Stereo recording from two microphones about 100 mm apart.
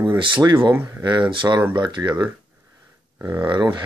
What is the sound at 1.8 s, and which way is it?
Speech, 50° right (ahead or behind).